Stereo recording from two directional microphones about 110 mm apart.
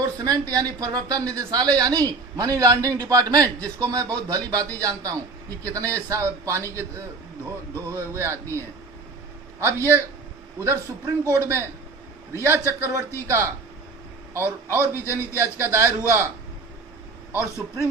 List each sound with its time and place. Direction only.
0.0 s a man's voice: 35° right (ahead or behind)